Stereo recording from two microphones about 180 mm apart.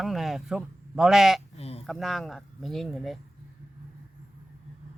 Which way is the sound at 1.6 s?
35° left (ahead or behind).